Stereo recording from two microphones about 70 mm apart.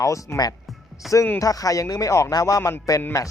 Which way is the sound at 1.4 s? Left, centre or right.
Left.